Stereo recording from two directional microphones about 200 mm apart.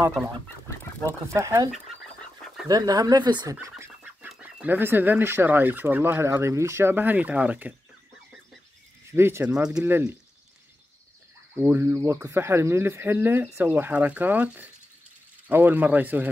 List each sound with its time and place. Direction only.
1.0 s fowl: 15° right (ahead or behind)
2.7 s speech: 20° right (ahead or behind)
3.5 s fowl: 10° right (ahead or behind)
9.1 s fowl: 10° right (ahead or behind)
11.5 s fowl: 10° right (ahead or behind)